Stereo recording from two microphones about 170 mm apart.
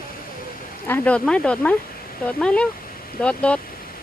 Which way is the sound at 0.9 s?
10° left (ahead or behind).